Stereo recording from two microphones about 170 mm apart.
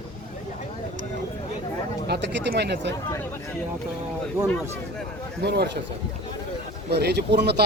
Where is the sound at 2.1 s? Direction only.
85° right.